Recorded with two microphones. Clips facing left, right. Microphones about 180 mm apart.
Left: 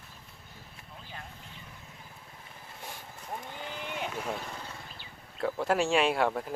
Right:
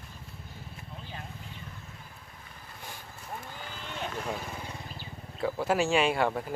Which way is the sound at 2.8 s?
Centre (ahead or behind).